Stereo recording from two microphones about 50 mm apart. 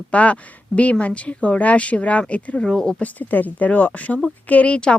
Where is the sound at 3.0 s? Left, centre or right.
Left.